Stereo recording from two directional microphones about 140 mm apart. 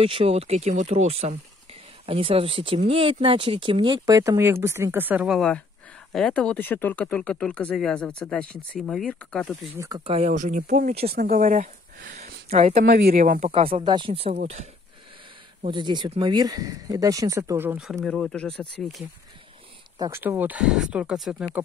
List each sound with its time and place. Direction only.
0.0 s speech: 40° right (ahead or behind); by 9.6 s 5° left (ahead or behind)
9.8 s speech: 25° right (ahead or behind)
10.0 s speech: 45° right (ahead or behind)
10.3 s speech: 65° right (ahead or behind)
11.1 s speech: 90° right; by 12.8 s 50° right (ahead or behind)
13.1 s speech: 80° right
13.5 s speech: 45° right (ahead or behind)
15.6 s speech: 35° right (ahead or behind); by 17.7 s 20° right (ahead or behind)
18.0 s speech: 5° left (ahead or behind)
20.0 s speech: 15° right (ahead or behind)